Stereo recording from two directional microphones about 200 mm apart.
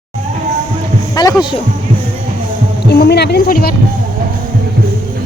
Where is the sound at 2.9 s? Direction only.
55° left (ahead or behind).